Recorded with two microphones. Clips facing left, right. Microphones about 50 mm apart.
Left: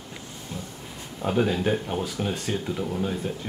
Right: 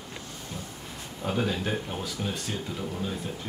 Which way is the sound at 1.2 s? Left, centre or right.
Centre.